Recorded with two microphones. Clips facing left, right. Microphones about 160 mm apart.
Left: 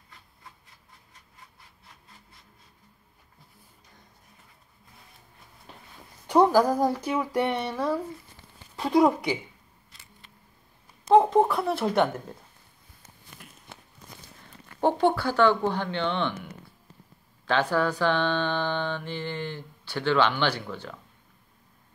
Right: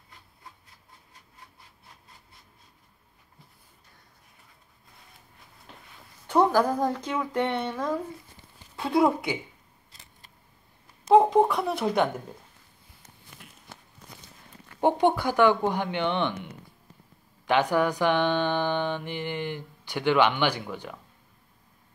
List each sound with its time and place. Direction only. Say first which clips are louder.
6.2 s a woman's voice: left 2 dB; 10° left (ahead or behind)
11.1 s speech: even; centre (ahead or behind)
14.8 s mantra: even; 15° right (ahead or behind)
17.5 s mantra: right 1 dB; 15° right (ahead or behind)